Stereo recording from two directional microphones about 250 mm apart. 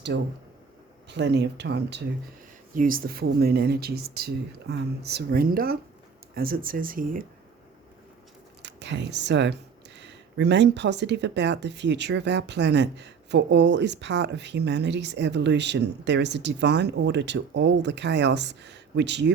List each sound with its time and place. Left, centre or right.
0.1 s speech: right
8.6 s speech: right